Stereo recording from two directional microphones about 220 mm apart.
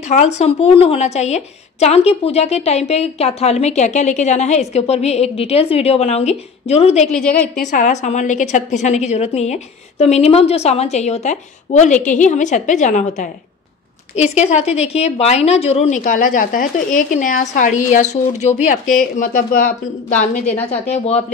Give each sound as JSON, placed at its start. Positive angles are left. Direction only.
{"t": 0.1, "sound": "a woman's voice", "side_deg": 30}
{"t": 7.2, "sound": "a woman's voice", "side_deg": 5}
{"t": 7.6, "sound": "a woman's voice", "side_deg": 35}
{"t": 20.9, "sound": "a woman's voice", "side_deg": 30}